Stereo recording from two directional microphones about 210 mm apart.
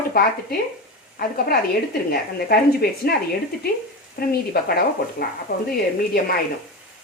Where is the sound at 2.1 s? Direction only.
45° left (ahead or behind).